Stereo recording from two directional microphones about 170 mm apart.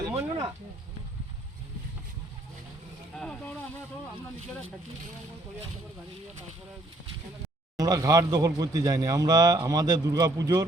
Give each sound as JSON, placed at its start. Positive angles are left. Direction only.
{"t": 0.0, "sound": "a sound", "side_deg": -15}
{"t": 3.2, "sound": "speech", "side_deg": 5}
{"t": 7.8, "sound": "a man's voice", "side_deg": -20}